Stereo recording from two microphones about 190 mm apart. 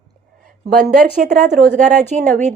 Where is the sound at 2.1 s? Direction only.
40° right (ahead or behind).